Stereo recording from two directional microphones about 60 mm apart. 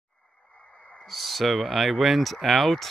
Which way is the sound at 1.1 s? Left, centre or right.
Centre.